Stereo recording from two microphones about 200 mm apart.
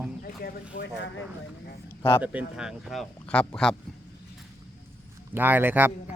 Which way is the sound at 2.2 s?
5° right (ahead or behind).